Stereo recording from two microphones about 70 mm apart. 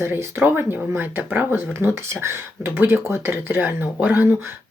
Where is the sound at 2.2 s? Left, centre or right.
Right.